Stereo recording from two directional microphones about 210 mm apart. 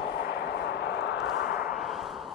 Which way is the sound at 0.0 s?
50° left (ahead or behind).